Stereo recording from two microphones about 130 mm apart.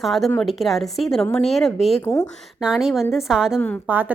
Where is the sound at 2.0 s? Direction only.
25° left (ahead or behind).